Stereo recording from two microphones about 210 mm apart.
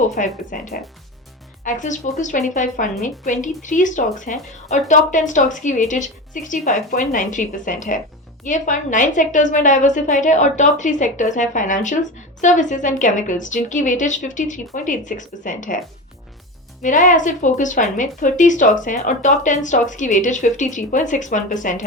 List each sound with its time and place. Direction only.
0.2 s a woman's voice: 40° left (ahead or behind)
16.8 s a woman's voice: 35° left (ahead or behind)